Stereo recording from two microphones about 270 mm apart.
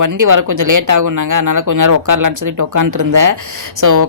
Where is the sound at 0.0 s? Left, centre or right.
Right.